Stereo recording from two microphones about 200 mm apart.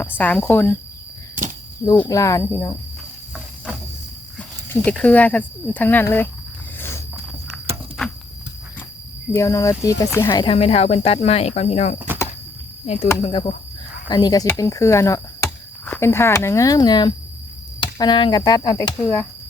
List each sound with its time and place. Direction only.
0.0 s speech: 10° left (ahead or behind)
1.4 s cricket: 40° right (ahead or behind)
2.0 s speech: 15° left (ahead or behind)
4.9 s speech: 5° left (ahead or behind)
6.7 s a sound: 10° left (ahead or behind)
9.3 s speech: 15° left (ahead or behind); by 11.9 s 35° left (ahead or behind)
11.9 s a sound: 10° right (ahead or behind)
12.8 s speech: 35° left (ahead or behind); by 19.3 s 10° left (ahead or behind)